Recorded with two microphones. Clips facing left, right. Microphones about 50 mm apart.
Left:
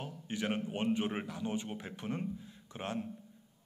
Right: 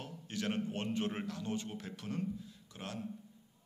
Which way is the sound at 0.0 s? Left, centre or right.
Centre.